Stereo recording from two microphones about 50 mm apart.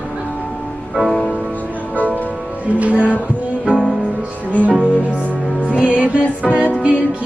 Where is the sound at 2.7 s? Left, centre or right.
Right.